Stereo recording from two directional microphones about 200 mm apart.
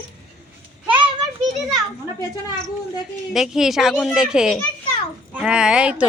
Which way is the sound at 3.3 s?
Centre (ahead or behind).